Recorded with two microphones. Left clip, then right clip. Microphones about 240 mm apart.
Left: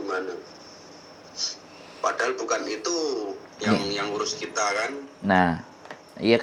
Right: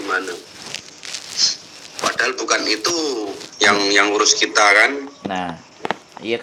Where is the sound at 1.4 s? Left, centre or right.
Right.